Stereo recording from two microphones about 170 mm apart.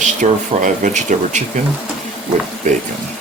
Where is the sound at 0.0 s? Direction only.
50° right (ahead or behind).